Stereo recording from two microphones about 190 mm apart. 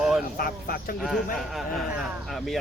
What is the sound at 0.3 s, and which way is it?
Speech, 50° left (ahead or behind).